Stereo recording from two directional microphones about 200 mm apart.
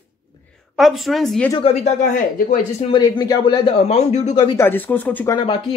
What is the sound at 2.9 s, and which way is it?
Speech, 20° left (ahead or behind).